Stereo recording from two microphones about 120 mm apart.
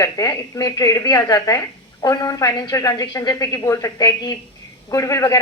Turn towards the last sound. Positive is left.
turn(degrees=30)  # may be behind; listen again after turning